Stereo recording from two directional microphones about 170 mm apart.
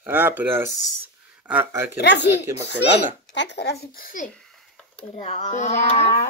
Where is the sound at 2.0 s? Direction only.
85° left.